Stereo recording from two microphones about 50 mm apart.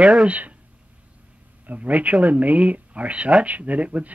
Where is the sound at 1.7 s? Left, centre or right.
Right.